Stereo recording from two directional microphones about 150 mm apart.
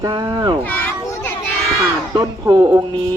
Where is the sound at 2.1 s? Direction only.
25° right (ahead or behind).